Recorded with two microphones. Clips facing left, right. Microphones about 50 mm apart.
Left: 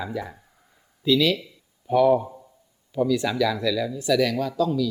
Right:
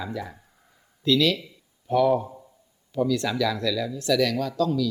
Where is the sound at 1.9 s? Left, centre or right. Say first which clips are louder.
Left 2 dB; centre.